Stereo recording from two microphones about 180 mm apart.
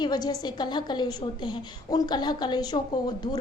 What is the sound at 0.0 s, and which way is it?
A woman's voice, 20° left (ahead or behind).